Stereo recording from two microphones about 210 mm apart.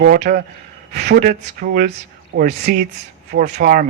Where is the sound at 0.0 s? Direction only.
45° right (ahead or behind).